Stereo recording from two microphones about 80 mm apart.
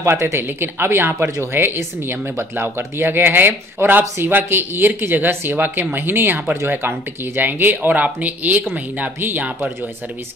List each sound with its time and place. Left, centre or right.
0.0 s speech: right